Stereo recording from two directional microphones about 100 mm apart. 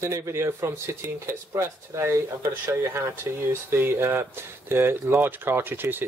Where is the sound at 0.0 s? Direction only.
25° right (ahead or behind).